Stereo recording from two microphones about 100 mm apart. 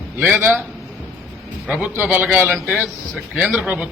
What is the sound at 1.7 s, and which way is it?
A man's voice, 10° right (ahead or behind).